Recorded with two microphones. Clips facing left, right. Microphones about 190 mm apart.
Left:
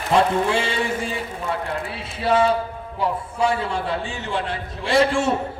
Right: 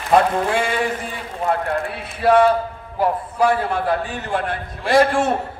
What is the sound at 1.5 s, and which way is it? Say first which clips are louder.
A man's voice: right 6 dB; 55° right (ahead or behind).